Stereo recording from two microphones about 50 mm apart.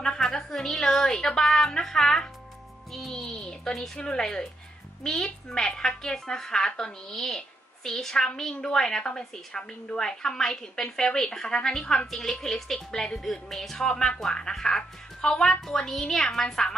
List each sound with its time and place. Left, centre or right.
0.0 s music: centre
1.5 s speech: centre